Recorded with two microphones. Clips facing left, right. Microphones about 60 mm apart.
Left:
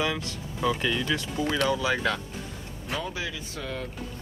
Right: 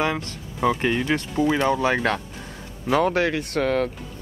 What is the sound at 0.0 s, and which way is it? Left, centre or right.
Speech, right.